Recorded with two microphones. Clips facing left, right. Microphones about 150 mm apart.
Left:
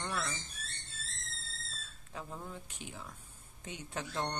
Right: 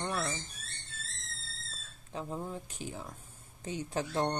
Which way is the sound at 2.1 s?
35° right (ahead or behind).